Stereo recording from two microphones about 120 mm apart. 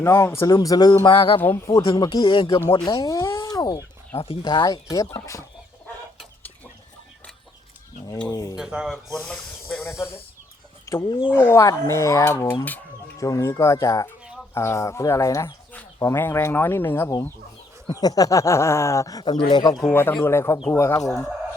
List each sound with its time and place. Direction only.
0.0 s speech: 25° left (ahead or behind)
1.0 s speech: 45° left (ahead or behind)
1.4 s speech: 15° left (ahead or behind)
1.8 s speech: 40° left (ahead or behind)
4.6 s speech: 30° left (ahead or behind)
8.3 s speech: 30° left (ahead or behind)
8.5 s speech: 5° right (ahead or behind)
9.1 s speech: 5° left (ahead or behind)
9.8 s speech: 20° left (ahead or behind)
18.0 s speech: 30° left (ahead or behind)
19.2 s speech: 40° left (ahead or behind)
19.9 s speech: 20° left (ahead or behind)